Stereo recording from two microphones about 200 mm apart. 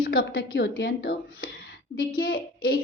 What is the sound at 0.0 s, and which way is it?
A woman's voice, 50° left (ahead or behind).